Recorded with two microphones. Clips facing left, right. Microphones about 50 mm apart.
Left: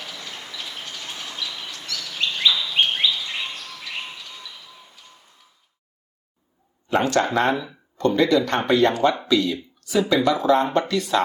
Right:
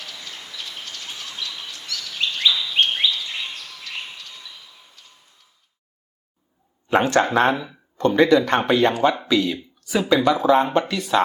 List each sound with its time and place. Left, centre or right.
0.3 s train: centre
1.5 s bird flight: centre
1.9 s bird: centre
6.8 s speech: right